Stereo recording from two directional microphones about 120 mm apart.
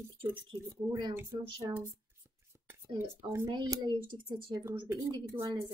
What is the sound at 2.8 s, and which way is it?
Speech, 25° right (ahead or behind).